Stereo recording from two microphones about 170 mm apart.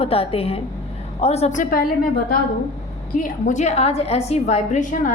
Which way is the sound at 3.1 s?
50° left (ahead or behind).